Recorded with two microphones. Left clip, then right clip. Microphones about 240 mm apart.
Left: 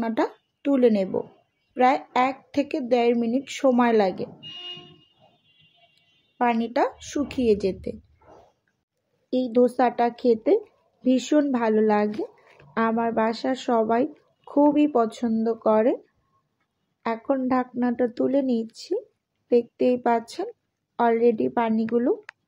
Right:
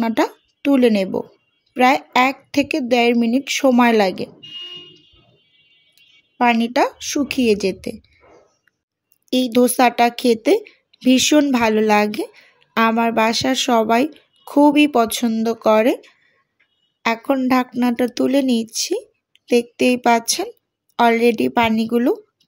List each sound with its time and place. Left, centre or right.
0.0 s a woman's voice: right
6.3 s speech: right
9.3 s a woman's voice: right